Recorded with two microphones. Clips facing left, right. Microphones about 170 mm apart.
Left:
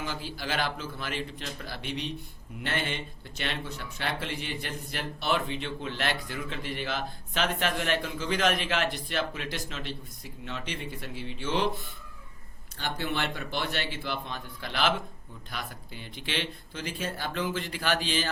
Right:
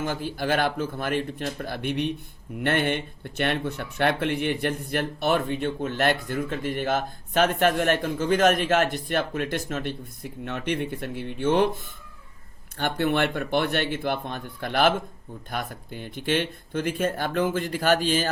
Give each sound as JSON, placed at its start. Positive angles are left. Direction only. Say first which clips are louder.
{"t": 0.0, "sound": "speech", "louder": "right 8 dB", "side_deg": -50}